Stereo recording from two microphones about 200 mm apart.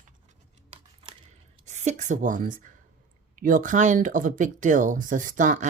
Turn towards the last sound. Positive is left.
turn(degrees=-40)  # may be behind; listen again after turning